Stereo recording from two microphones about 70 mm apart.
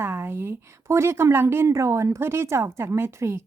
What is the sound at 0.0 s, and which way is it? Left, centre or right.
A woman's voice, right.